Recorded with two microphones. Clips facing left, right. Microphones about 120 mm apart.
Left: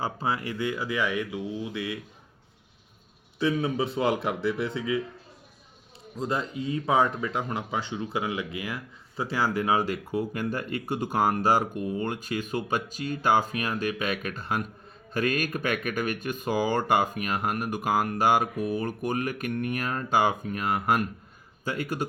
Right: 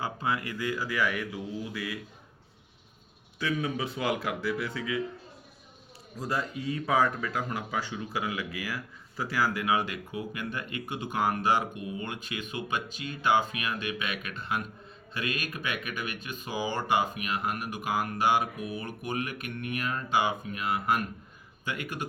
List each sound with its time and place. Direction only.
0.0 s speech: 30° left (ahead or behind)
3.3 s speech: 30° left (ahead or behind)
6.1 s speech: 25° left (ahead or behind)